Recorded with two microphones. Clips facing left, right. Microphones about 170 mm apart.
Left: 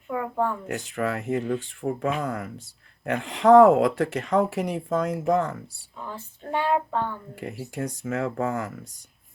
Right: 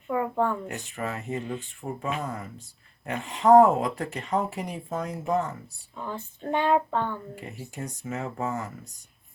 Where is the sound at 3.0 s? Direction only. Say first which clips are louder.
Left 3 dB; 90° left.